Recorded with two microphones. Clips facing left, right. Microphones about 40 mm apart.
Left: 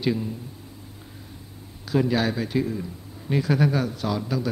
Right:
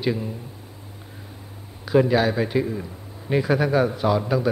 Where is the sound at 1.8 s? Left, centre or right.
Centre.